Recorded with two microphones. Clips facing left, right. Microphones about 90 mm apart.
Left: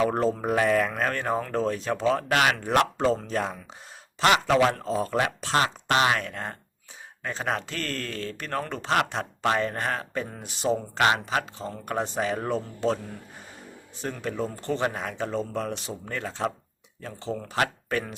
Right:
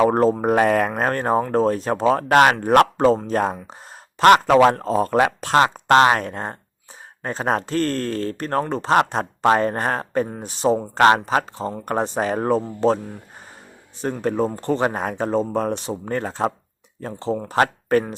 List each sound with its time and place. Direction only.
0.0 s speech: 45° right (ahead or behind)
14.0 s speech: 40° right (ahead or behind)